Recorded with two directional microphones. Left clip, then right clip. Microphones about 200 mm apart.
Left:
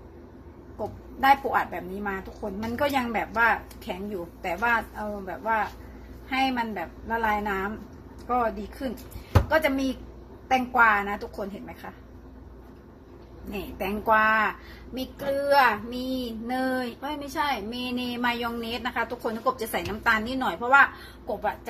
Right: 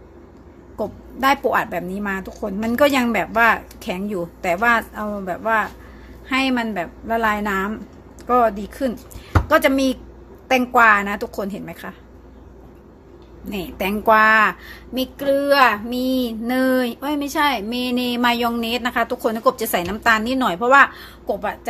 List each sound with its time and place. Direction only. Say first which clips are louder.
1.2 s speech: right 4 dB; 45° right (ahead or behind)
13.5 s speech: right 7 dB; 45° right (ahead or behind)